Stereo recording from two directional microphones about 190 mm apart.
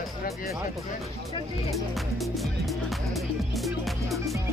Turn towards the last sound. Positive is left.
turn(degrees=-15)  # may be behind; listen again after turning